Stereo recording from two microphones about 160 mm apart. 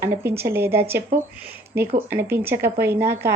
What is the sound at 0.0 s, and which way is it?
A woman's voice, 15° right (ahead or behind).